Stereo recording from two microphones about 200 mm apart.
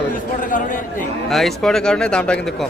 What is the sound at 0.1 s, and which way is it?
Speech, 40° left (ahead or behind).